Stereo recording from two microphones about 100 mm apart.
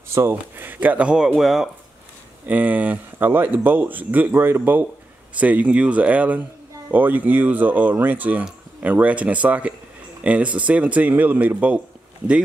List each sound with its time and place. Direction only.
0.1 s speech: 25° right (ahead or behind); by 1.7 s centre (ahead or behind)
2.4 s speech: 15° right (ahead or behind)